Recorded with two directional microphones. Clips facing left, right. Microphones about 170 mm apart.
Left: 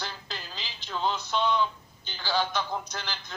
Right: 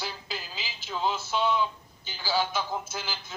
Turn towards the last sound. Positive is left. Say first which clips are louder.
# right 1 dB
turn(degrees=-5)  # may be behind; listen again after turning